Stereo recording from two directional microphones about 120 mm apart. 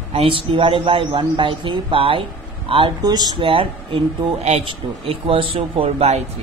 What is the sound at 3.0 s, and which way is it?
Speech, 35° right (ahead or behind).